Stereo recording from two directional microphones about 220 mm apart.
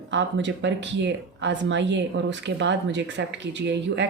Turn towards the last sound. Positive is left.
turn(degrees=-55)  # may be behind; listen again after turning